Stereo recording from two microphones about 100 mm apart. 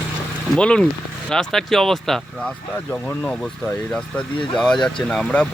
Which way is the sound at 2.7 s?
15° left (ahead or behind).